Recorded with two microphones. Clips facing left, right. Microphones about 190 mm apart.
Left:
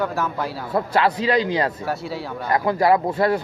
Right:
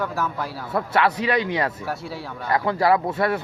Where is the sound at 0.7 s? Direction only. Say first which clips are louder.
Left 1 dB; 25° left (ahead or behind).